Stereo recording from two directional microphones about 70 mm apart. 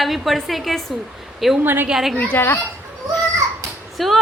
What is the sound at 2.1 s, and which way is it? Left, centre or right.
Speech, left.